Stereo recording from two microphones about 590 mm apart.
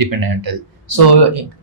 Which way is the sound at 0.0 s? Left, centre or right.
Right.